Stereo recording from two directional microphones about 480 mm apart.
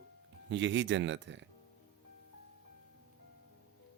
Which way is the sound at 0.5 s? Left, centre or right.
Right.